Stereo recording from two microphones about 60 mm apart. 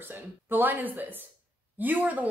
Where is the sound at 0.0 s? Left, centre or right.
Right.